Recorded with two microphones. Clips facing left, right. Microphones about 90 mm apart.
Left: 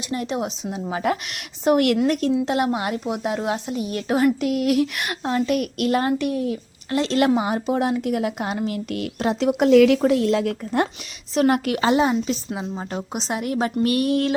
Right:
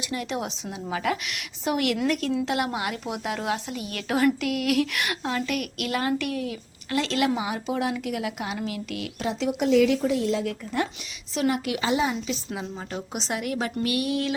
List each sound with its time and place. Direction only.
0.1 s a woman's voice: 30° left (ahead or behind)
0.7 s a woman's voice: 30° left (ahead or behind)
1.1 s a woman's voice: 45° left (ahead or behind)
2.5 s a woman's voice: 30° left (ahead or behind)
7.3 s a woman's voice: 40° left (ahead or behind); by 10.5 s 65° left (ahead or behind)
11.3 s a woman's voice: 55° left (ahead or behind)
12.5 s a woman's voice: 25° left (ahead or behind); by 14.3 s 50° left (ahead or behind)